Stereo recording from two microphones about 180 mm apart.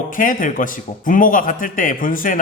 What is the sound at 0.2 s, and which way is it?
A man's voice, 50° left (ahead or behind).